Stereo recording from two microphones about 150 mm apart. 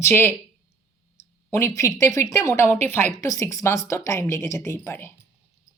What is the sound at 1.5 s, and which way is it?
A woman's voice, 20° left (ahead or behind).